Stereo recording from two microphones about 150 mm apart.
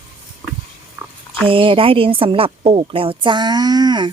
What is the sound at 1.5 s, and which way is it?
A woman's voice, 35° right (ahead or behind).